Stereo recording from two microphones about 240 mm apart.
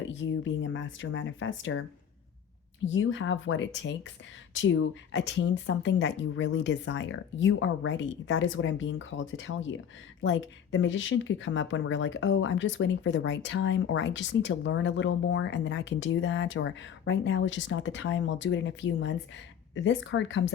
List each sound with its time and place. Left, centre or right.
0.4 s speech: left
2.8 s speech: left